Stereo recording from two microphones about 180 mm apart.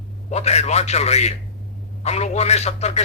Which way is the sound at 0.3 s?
35° left (ahead or behind).